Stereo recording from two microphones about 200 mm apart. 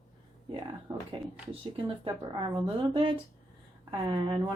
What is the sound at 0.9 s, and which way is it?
A woman's voice, 25° right (ahead or behind).